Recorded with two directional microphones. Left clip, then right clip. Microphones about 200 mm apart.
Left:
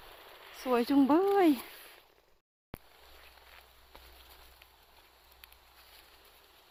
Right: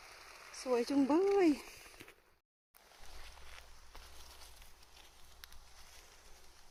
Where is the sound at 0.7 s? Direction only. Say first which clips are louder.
Left 6 dB; 20° left (ahead or behind).